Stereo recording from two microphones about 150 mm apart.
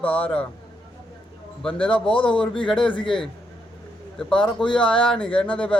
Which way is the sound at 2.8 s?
35° left (ahead or behind).